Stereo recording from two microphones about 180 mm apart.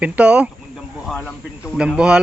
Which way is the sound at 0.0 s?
5° right (ahead or behind).